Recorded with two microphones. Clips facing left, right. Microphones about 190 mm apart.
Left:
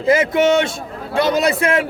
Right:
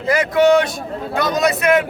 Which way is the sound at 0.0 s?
25° left (ahead or behind).